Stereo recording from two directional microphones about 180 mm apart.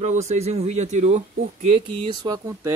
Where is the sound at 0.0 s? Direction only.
40° right (ahead or behind).